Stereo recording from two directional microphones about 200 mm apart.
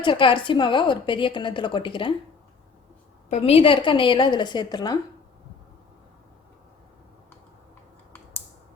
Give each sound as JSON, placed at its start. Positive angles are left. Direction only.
{"t": 0.0, "sound": "a woman's voice", "side_deg": 25}
{"t": 3.2, "sound": "a woman's voice", "side_deg": 30}